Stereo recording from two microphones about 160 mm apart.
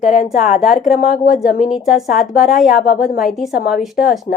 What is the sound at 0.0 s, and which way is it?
Speech, 55° left (ahead or behind).